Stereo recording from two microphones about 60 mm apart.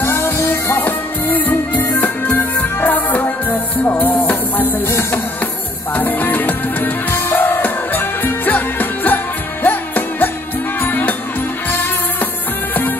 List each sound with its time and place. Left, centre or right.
0.0 s music: left
5.9 s music: left